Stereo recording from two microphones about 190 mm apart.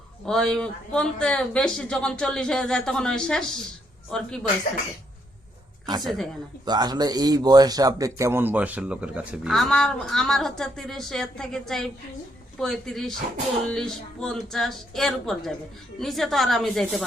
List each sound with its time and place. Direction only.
0.3 s a man's voice: 5° left (ahead or behind)
5.8 s a woman's voice: 20° right (ahead or behind); by 17.0 s centre (ahead or behind)